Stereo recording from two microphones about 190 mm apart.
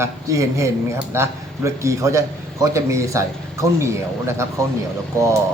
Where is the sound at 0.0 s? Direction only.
15° right (ahead or behind).